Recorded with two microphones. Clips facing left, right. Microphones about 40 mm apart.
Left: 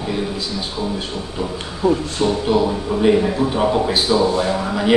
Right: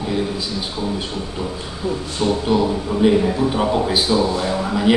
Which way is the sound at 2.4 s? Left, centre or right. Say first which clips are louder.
Left 1 dB; centre.